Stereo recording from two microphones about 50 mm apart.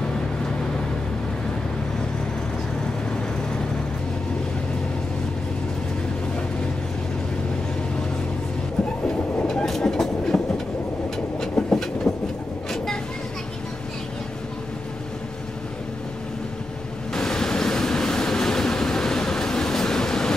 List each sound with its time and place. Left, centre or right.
9.5 s train: centre
11.6 s train: centre
12.1 s vehicle: centre
17.1 s train: centre